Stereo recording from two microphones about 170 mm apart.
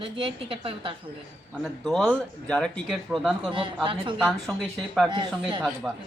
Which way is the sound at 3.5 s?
30° right (ahead or behind).